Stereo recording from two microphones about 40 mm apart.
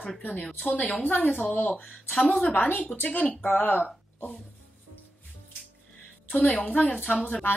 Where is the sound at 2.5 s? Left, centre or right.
Left.